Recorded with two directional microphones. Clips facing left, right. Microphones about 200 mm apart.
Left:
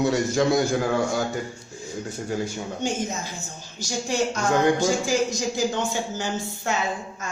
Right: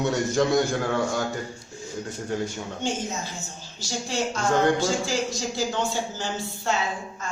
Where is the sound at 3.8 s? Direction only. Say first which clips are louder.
Left 3 dB; 15° left (ahead or behind).